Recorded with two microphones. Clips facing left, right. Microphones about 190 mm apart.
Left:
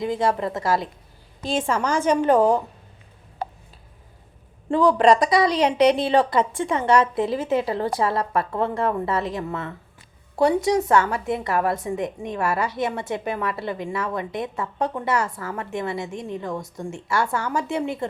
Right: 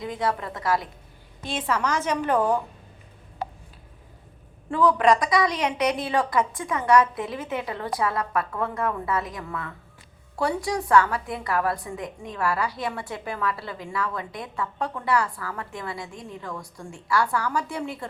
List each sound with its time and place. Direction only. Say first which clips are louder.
0.0 s a woman's voice: left 5 dB; 25° left (ahead or behind)
4.7 s a woman's voice: left 3 dB; 30° left (ahead or behind)